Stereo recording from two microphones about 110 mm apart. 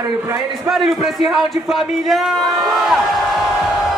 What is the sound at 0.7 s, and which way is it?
A man's voice, centre (ahead or behind).